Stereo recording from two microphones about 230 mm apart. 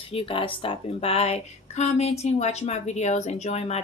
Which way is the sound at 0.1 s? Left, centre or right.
Left.